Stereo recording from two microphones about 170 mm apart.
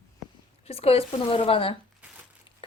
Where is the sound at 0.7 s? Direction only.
35° left (ahead or behind).